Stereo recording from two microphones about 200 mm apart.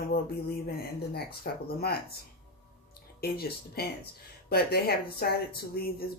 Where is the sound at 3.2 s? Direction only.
50° left (ahead or behind).